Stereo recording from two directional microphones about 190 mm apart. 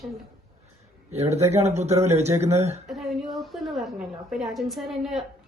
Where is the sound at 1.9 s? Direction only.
15° right (ahead or behind).